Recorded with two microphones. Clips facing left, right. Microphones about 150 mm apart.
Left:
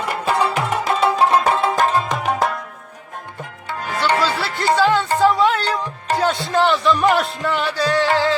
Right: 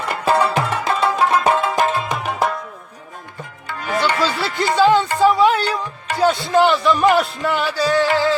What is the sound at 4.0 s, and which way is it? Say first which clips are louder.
Music: left 1 dB; 15° right (ahead or behind).